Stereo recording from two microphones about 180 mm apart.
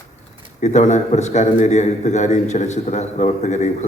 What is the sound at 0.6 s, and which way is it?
A man's voice, 40° left (ahead or behind).